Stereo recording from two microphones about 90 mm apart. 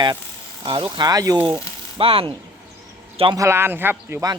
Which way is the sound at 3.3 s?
30° right (ahead or behind).